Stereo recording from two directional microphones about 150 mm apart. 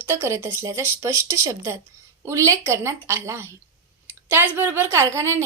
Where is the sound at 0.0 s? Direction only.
15° right (ahead or behind).